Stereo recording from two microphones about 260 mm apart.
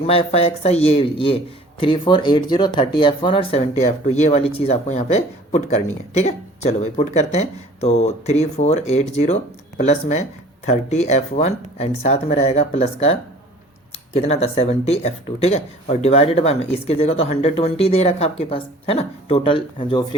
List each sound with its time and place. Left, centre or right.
0.0 s speech: left